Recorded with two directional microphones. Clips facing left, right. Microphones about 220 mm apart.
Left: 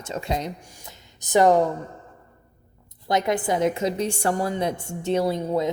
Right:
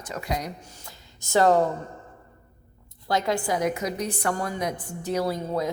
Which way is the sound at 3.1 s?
20° left (ahead or behind).